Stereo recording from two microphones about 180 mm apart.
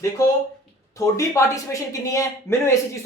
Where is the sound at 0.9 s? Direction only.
15° left (ahead or behind).